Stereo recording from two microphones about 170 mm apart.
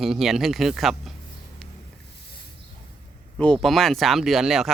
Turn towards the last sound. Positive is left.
turn(degrees=0)  # may be behind; listen again after turning